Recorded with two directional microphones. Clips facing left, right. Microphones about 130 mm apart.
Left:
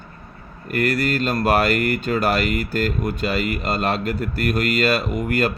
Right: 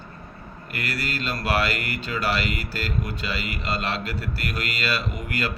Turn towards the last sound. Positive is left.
turn(degrees=50)  # may be behind; listen again after turning